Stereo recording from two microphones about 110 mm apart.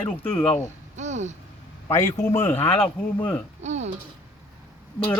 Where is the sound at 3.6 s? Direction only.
90° right.